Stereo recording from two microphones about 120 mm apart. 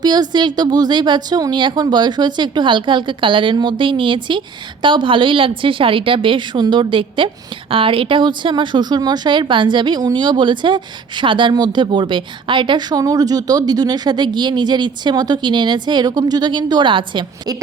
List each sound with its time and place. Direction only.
0.0 s speech: 35° right (ahead or behind)